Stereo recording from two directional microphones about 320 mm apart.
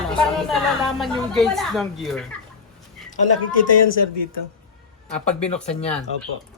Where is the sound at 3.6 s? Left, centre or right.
Left.